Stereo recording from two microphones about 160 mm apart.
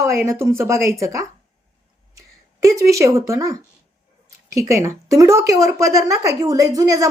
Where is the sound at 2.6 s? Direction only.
20° right (ahead or behind).